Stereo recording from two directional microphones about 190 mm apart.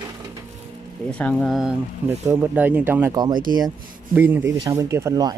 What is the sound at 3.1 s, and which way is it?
Speech, 20° right (ahead or behind).